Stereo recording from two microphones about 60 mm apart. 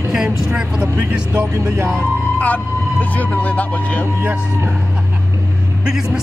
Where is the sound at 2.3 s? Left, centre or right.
Left.